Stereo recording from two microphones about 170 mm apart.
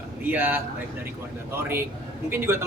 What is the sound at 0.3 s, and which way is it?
Speech, 10° right (ahead or behind).